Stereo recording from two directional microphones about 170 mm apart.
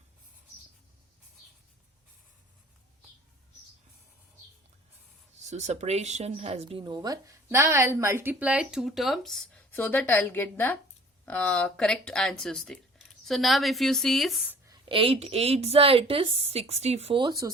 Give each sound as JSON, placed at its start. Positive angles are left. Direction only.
{"t": 5.4, "sound": "speech", "side_deg": -40}
{"t": 14.7, "sound": "a woman's voice", "side_deg": -30}